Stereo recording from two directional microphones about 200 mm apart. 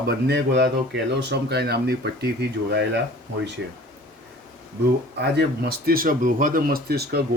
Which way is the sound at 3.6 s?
55° right (ahead or behind).